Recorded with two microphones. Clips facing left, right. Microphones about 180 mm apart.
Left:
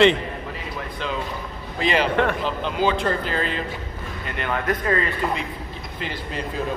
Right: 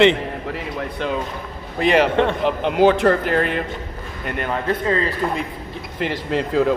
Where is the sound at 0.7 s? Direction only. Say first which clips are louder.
Right 4 dB; 55° right (ahead or behind).